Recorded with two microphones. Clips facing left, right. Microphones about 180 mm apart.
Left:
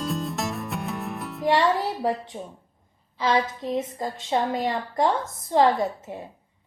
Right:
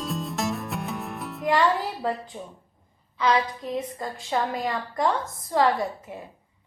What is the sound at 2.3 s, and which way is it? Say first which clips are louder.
A woman's voice: left 2 dB; 35° left (ahead or behind).